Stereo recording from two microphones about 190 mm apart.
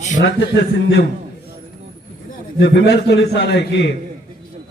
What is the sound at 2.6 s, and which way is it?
A man's voice, 65° left (ahead or behind).